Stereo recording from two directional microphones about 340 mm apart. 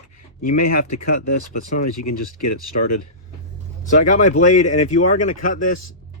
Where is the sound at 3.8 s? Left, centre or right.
Left.